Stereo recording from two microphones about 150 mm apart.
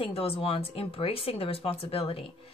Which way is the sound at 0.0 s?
40° left (ahead or behind).